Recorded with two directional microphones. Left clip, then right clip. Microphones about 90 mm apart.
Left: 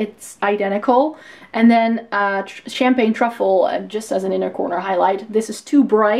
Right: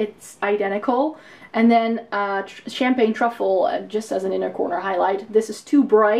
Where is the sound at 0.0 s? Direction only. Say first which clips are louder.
Left 3 dB; 40° left (ahead or behind).